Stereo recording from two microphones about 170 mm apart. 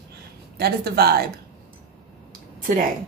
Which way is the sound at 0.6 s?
65° right (ahead or behind).